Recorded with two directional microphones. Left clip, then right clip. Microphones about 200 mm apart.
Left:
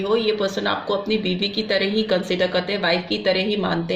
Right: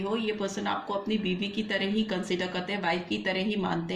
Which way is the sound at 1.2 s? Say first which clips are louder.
Left 9 dB; 25° left (ahead or behind).